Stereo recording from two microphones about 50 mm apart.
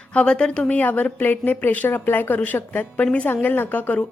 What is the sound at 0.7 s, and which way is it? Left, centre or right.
Speech, left.